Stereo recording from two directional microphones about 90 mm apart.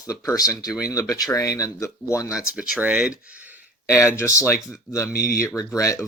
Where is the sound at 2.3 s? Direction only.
10° right (ahead or behind).